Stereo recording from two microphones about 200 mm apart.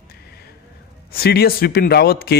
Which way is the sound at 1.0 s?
50° left (ahead or behind).